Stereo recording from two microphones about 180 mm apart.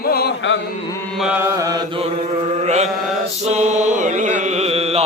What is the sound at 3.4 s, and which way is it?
Mantra, 40° right (ahead or behind).